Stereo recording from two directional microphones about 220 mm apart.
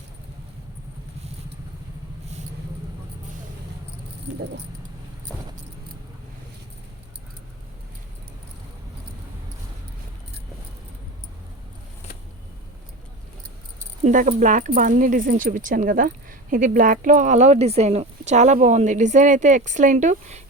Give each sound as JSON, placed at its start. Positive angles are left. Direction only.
{"t": 14.0, "sound": "speech", "side_deg": -35}